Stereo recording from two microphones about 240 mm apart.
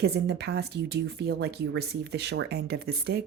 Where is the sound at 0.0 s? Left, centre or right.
Right.